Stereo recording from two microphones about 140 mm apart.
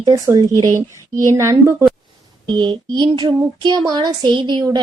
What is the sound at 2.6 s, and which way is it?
A woman's voice, 35° right (ahead or behind).